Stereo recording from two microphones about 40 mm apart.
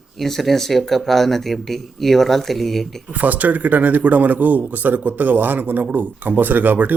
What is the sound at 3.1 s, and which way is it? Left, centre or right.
A man's voice, right.